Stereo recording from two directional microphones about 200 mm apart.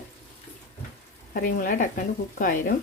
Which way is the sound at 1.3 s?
45° left (ahead or behind).